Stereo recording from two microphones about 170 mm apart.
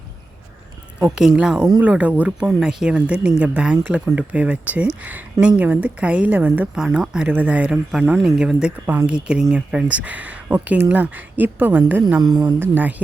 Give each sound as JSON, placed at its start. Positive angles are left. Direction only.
{"t": 1.1, "sound": "a woman's voice", "side_deg": -5}
{"t": 12.2, "sound": "speech", "side_deg": -25}